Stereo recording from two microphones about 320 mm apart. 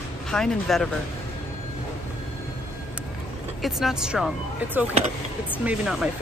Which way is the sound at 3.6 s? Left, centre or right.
Centre.